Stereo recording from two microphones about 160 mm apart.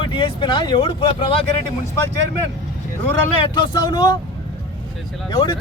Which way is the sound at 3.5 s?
25° left (ahead or behind).